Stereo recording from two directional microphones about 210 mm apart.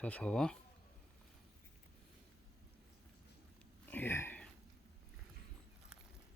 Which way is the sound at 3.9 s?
10° left (ahead or behind).